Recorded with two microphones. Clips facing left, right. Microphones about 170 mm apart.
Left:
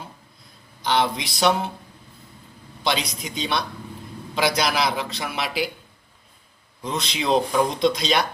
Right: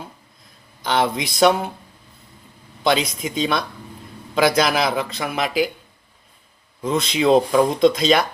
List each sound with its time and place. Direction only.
0.8 s a sound: 50° right (ahead or behind)
1.2 s a man's voice: 50° right (ahead or behind)
2.8 s a man's voice: 50° right (ahead or behind)
6.8 s a man's voice: 50° right (ahead or behind)